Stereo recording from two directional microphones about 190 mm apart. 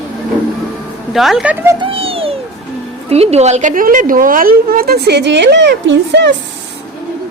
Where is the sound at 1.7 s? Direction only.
30° right (ahead or behind); by 6.3 s 70° right (ahead or behind).